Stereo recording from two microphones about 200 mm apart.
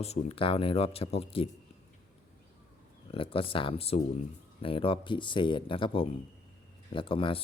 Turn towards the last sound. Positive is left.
turn(degrees=25)  # may be behind; listen again after turning